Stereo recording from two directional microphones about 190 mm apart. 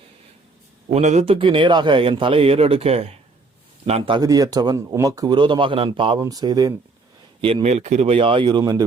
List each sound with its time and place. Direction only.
0.9 s a man's voice: 35° right (ahead or behind)
7.4 s a man's voice: 30° right (ahead or behind)